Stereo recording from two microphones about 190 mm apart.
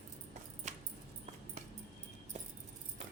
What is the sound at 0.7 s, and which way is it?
Dog, 40° right (ahead or behind).